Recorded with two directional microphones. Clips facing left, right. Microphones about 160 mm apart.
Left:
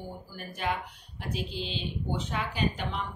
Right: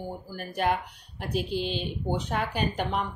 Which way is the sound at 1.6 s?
55° right (ahead or behind).